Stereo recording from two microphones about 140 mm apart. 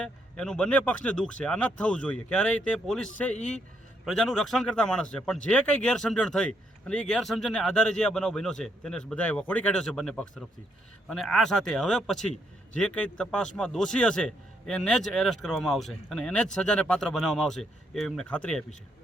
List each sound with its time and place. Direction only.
0.0 s a man's voice: 5° left (ahead or behind)